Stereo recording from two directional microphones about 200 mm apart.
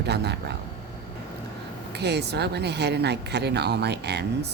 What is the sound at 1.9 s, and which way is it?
A woman's voice, 55° right (ahead or behind).